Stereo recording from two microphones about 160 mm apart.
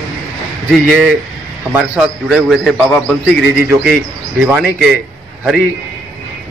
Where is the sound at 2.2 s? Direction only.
Centre (ahead or behind).